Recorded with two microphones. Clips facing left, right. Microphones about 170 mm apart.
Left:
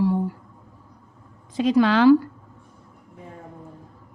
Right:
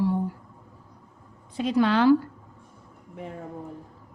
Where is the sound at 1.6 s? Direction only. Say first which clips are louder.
Left 4 dB; 90° left.